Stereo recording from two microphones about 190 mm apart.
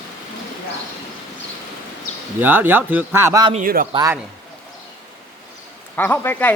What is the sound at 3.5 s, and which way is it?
Speech, 45° right (ahead or behind).